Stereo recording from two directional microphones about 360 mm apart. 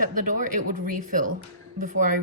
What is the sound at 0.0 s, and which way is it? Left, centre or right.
A woman's voice, right.